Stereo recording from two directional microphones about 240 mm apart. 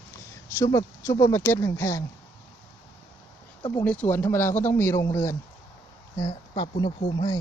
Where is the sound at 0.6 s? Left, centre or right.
Centre.